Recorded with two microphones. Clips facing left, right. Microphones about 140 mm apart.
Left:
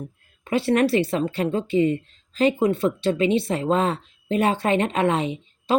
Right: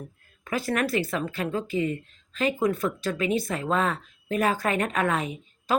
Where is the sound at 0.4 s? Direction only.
30° left (ahead or behind).